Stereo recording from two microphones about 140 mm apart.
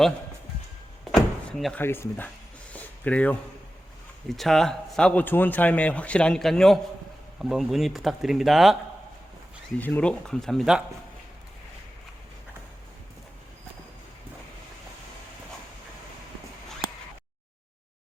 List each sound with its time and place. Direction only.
1.1 s door: centre (ahead or behind)
1.8 s a man's voice: 15° left (ahead or behind)
2.7 s a sound: 10° left (ahead or behind)
4.3 s a man's voice: centre (ahead or behind)
9.7 s speech: 10° left (ahead or behind)